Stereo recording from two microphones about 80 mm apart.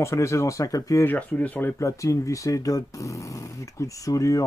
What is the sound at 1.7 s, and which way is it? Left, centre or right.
Speech, left.